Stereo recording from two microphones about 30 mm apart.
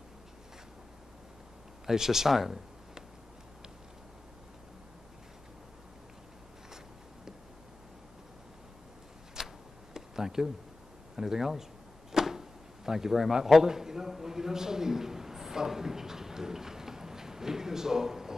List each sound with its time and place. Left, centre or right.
1.9 s speech: centre
9.4 s a sound: right
11.1 s speech: centre